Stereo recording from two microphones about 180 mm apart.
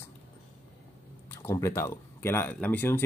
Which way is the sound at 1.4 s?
15° left (ahead or behind).